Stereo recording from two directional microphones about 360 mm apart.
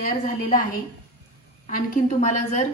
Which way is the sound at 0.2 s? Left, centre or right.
Left.